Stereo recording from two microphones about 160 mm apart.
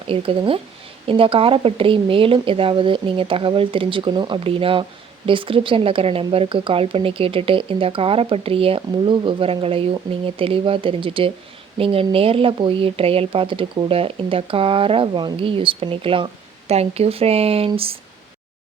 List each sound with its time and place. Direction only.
0.1 s speech: 35° right (ahead or behind)